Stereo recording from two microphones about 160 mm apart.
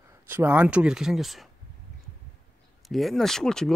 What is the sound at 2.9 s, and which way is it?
Speech, centre (ahead or behind).